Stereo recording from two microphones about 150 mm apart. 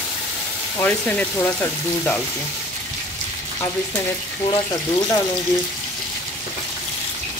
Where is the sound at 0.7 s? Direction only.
10° left (ahead or behind).